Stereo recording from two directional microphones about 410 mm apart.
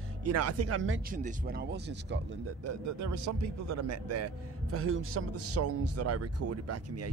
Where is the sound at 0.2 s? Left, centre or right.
Right.